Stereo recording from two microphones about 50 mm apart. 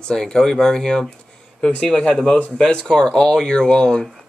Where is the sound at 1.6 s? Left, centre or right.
Left.